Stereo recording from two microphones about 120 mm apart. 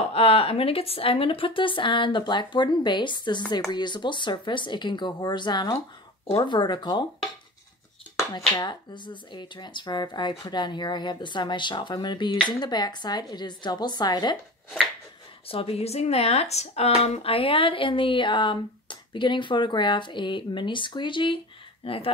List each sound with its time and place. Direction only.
0.1 s speech: 50° left (ahead or behind)
8.2 s speech: 25° left (ahead or behind)
8.6 s speech: 40° left (ahead or behind)
15.4 s speech: 50° left (ahead or behind)